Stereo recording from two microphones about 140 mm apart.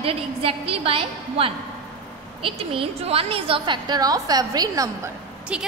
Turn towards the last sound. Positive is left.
turn(degrees=-10)  # may be behind; listen again after turning